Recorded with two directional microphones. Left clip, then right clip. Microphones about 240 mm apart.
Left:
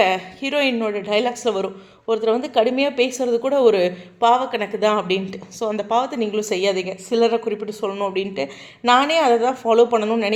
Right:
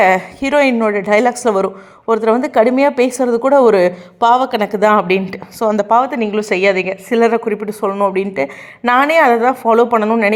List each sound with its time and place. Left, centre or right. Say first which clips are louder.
0.0 s a woman's voice: right 7 dB; right
6.0 s a woman's voice: right 6 dB; centre